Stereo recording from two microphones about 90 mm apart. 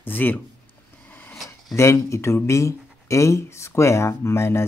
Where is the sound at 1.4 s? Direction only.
30° left (ahead or behind).